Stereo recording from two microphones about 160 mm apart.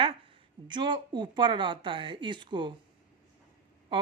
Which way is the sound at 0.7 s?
30° right (ahead or behind).